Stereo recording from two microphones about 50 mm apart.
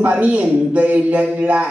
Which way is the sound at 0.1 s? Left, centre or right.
Right.